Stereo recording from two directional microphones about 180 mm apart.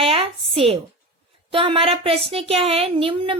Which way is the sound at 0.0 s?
30° right (ahead or behind).